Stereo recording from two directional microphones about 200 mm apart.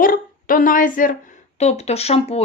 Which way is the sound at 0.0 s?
45° left (ahead or behind).